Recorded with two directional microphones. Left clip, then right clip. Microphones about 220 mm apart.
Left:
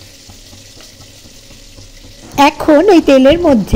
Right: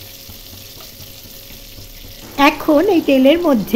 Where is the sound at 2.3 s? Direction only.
20° left (ahead or behind).